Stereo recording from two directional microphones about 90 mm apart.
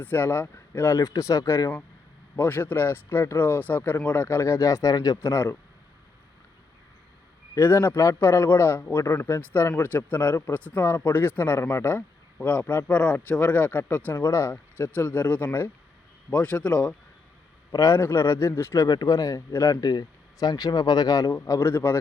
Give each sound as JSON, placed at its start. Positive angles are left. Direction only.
{"t": 0.0, "sound": "speech", "side_deg": 20}
{"t": 0.7, "sound": "speech", "side_deg": 35}
{"t": 2.3, "sound": "speech", "side_deg": 25}
{"t": 5.2, "sound": "speech", "side_deg": 30}
{"t": 7.5, "sound": "speech", "side_deg": 30}
{"t": 9.0, "sound": "speech", "side_deg": 30}
{"t": 9.4, "sound": "speech", "side_deg": 20}
{"t": 17.7, "sound": "speech", "side_deg": 35}
{"t": 18.9, "sound": "speech", "side_deg": 45}
{"t": 19.7, "sound": "speech", "side_deg": 50}